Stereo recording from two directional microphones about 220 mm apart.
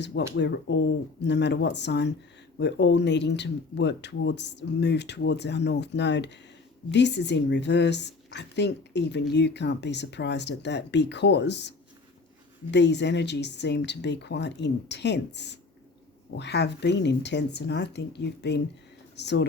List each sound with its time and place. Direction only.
0.0 s speech: 50° left (ahead or behind)
12.7 s speech: 50° left (ahead or behind)